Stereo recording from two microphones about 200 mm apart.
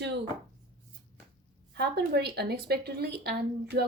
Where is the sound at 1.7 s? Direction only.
55° right (ahead or behind).